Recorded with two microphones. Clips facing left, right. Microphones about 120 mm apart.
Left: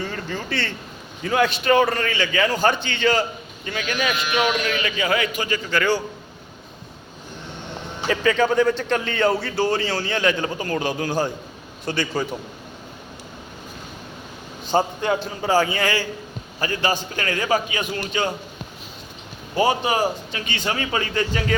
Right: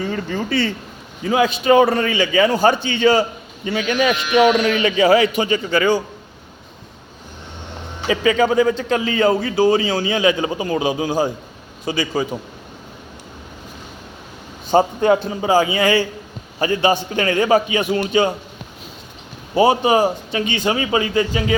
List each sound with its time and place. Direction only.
0.1 s a man's voice: 10° right (ahead or behind)
3.7 s a man's voice: 25° right (ahead or behind)
8.0 s a man's voice: 10° right (ahead or behind)
14.7 s a man's voice: 15° right (ahead or behind)
19.5 s a man's voice: 20° right (ahead or behind)